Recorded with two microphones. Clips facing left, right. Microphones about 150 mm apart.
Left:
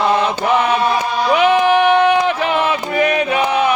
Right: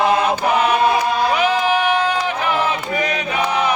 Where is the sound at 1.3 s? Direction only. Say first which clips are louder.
Left 9 dB; 55° left (ahead or behind).